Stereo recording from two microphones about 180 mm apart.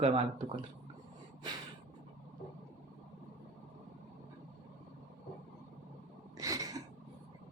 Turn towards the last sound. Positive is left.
turn(degrees=-20)  # may be behind; listen again after turning